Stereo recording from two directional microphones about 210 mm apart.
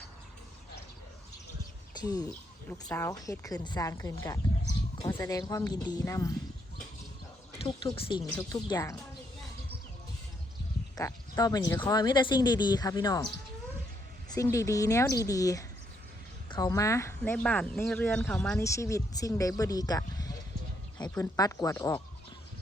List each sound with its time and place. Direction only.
1.9 s speech: 20° left (ahead or behind)
7.6 s speech: 25° left (ahead or behind)
10.9 s speech: 15° left (ahead or behind)
14.3 s speech: 15° left (ahead or behind)